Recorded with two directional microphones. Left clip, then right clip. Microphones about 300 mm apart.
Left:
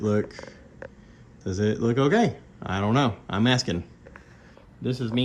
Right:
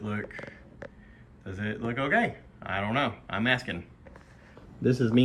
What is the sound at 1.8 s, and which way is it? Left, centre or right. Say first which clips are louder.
Speech: left 3 dB; centre.